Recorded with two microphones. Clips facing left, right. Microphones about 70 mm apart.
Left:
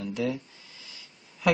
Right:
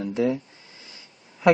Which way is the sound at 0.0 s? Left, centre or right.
Right.